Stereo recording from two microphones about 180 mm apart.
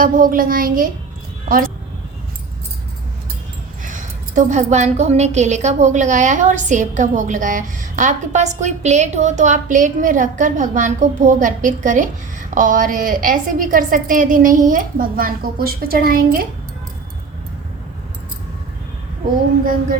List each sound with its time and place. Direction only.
0.0 s speech: 50° right (ahead or behind)
3.8 s speech: 45° right (ahead or behind)